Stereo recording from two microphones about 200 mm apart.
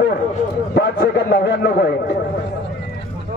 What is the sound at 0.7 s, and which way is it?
A man's voice, 50° left (ahead or behind).